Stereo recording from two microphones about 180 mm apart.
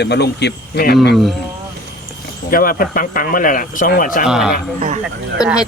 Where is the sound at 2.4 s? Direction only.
55° left (ahead or behind).